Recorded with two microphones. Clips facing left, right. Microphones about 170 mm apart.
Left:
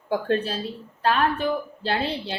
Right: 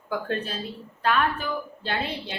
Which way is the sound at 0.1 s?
30° left (ahead or behind).